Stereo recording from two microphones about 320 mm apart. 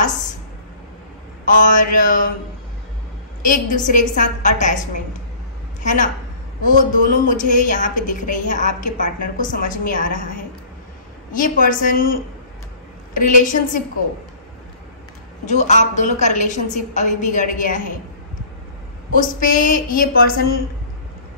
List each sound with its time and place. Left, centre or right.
1.4 s a woman's voice: left
3.7 s a woman's voice: left
5.8 s a sound: left
6.6 s a woman's voice: left
15.4 s a woman's voice: left
19.1 s a woman's voice: left